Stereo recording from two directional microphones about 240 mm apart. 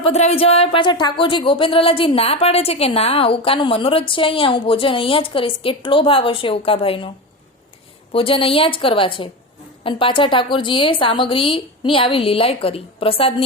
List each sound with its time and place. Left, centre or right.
0.0 s speech: left
8.1 s speech: left